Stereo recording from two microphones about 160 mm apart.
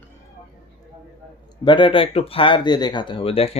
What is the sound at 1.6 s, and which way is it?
Speech, 30° left (ahead or behind).